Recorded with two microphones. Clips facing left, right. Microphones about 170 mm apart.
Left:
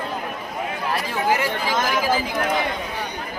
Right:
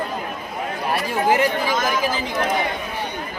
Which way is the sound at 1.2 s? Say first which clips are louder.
Right 4 dB; 20° right (ahead or behind).